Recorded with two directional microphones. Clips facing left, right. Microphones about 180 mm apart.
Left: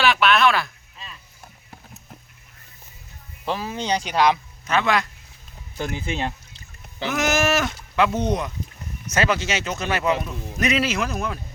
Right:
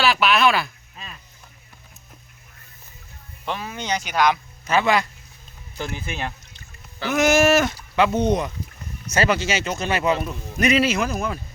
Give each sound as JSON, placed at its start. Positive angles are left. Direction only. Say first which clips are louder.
{"t": 0.0, "sound": "speech", "louder": "even", "side_deg": 0}
{"t": 3.7, "sound": "speech", "louder": "left 2 dB", "side_deg": 30}
{"t": 4.6, "sound": "speech", "louder": "right 2 dB", "side_deg": 0}
{"t": 5.8, "sound": "speech", "louder": "left 3 dB", "side_deg": 20}
{"t": 7.1, "sound": "speech", "louder": "right 5 dB", "side_deg": 0}